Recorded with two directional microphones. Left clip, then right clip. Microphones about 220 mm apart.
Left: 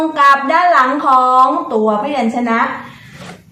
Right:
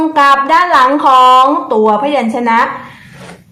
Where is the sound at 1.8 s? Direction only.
45° right (ahead or behind).